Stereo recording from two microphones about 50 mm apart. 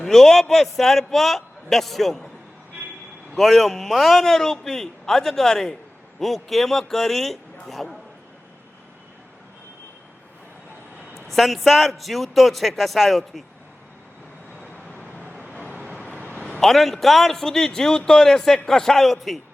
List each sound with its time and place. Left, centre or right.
0.0 s a man's voice: centre
3.3 s a man's voice: centre
11.3 s a man's voice: centre
14.6 s vehicle: left
16.0 s a sound: centre
16.2 s a sound: left
16.6 s a man's voice: centre